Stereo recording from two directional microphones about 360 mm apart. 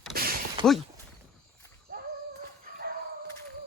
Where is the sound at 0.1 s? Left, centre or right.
Right.